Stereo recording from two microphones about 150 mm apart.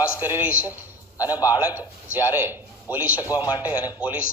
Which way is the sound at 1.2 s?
25° left (ahead or behind).